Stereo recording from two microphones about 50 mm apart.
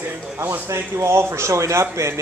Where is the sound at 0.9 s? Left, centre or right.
Right.